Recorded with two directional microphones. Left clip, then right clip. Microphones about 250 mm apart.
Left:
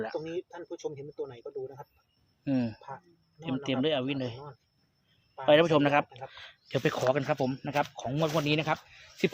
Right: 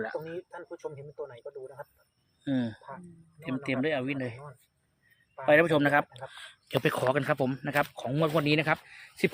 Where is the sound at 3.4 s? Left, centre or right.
Left.